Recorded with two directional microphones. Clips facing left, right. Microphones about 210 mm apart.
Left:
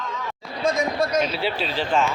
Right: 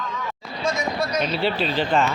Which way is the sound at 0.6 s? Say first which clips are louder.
Left 3 dB; 50° left (ahead or behind).